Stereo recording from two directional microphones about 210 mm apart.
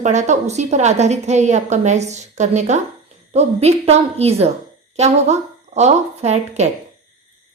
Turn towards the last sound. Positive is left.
turn(degrees=-30)  # may be behind; listen again after turning